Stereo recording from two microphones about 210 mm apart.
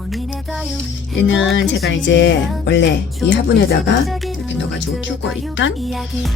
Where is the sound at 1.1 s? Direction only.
60° left (ahead or behind).